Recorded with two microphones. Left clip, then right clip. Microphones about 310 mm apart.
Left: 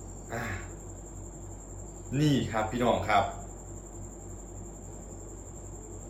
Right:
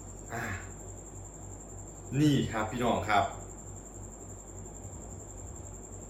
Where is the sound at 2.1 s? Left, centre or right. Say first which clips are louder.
Even; centre.